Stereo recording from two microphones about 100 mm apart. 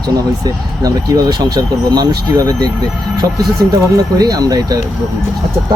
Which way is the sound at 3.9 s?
40° right (ahead or behind).